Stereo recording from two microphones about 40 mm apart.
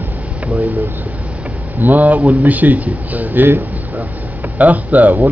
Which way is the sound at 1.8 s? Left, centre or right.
Right.